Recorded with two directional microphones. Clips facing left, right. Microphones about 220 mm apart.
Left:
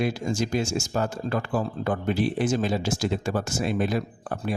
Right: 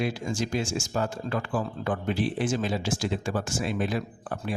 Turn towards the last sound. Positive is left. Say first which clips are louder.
# left 3 dB
turn(degrees=40)  # may be behind; listen again after turning